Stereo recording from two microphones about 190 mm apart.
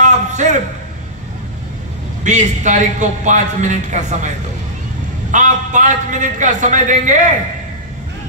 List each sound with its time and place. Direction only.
0.0 s a sound: 40° right (ahead or behind)
2.2 s a man's voice: 40° right (ahead or behind)
5.3 s a man's voice: 40° right (ahead or behind)